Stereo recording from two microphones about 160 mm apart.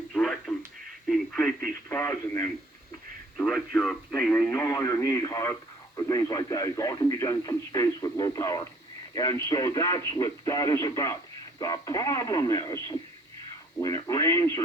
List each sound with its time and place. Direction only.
0.1 s a sound: 5° left (ahead or behind)
1.0 s radio: 5° left (ahead or behind)
3.3 s speech: 5° left (ahead or behind)